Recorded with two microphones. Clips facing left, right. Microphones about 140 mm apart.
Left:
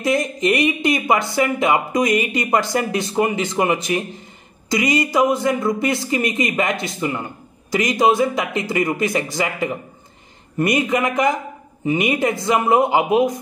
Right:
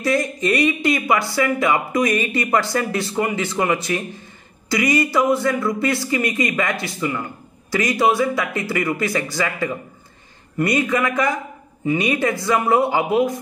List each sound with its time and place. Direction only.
0.0 s speech: 20° left (ahead or behind)